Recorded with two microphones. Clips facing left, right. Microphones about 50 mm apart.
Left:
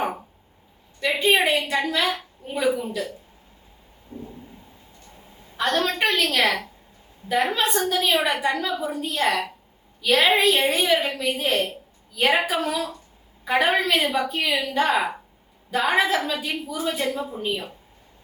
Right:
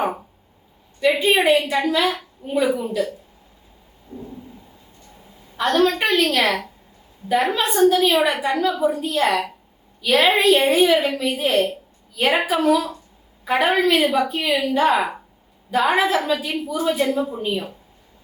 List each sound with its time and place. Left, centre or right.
1.0 s a woman's voice: centre
4.1 s a sound: left
5.5 s a woman's voice: centre